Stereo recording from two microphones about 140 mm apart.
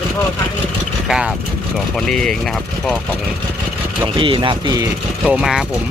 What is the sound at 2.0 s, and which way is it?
Speech, 5° left (ahead or behind).